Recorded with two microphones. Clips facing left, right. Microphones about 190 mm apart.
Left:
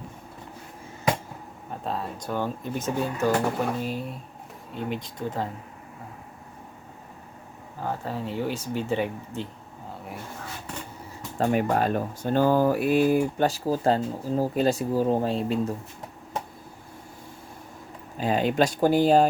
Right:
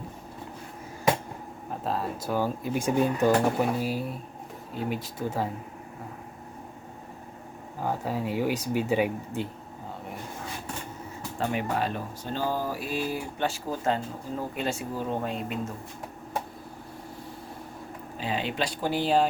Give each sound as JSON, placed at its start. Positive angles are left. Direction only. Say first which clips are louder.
{"t": 1.7, "sound": "speech", "louder": "right 1 dB", "side_deg": 0}
{"t": 7.8, "sound": "speech", "louder": "right 1 dB", "side_deg": -10}
{"t": 11.3, "sound": "speech", "louder": "left 5 dB", "side_deg": 45}
{"t": 18.2, "sound": "speech", "louder": "left 7 dB", "side_deg": 45}